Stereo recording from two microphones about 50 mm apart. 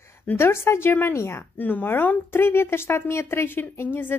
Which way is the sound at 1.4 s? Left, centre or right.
Left.